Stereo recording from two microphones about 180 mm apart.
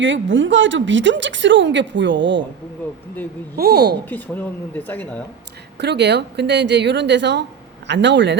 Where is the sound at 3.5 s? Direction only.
60° right (ahead or behind).